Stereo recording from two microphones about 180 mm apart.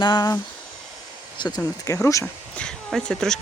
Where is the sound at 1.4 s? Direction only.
20° left (ahead or behind).